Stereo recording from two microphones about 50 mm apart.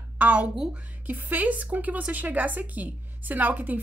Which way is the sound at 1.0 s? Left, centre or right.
Right.